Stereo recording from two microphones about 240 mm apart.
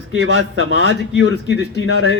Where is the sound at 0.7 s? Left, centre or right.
Right.